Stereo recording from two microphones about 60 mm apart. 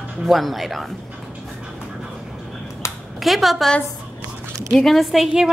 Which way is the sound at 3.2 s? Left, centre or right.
Centre.